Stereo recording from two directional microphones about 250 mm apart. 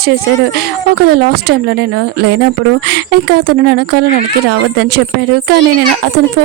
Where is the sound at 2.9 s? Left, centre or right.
Right.